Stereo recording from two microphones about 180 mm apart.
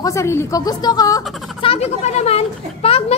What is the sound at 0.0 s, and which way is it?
Speech, 15° left (ahead or behind).